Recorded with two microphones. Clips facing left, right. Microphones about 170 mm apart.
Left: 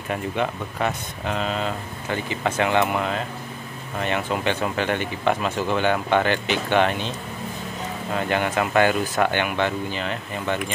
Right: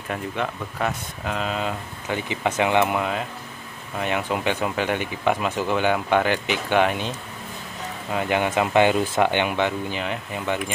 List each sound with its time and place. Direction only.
0.1 s speech: centre (ahead or behind)